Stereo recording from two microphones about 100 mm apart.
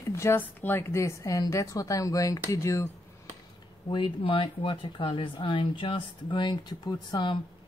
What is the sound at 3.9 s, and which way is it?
Speech, 60° left (ahead or behind).